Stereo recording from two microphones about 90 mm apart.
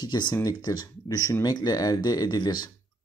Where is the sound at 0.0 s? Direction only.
50° left (ahead or behind).